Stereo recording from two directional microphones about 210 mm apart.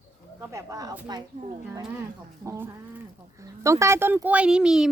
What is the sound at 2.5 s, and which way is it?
A woman's voice, 10° right (ahead or behind).